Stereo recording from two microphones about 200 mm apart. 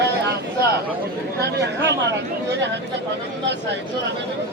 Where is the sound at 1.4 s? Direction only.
60° right (ahead or behind).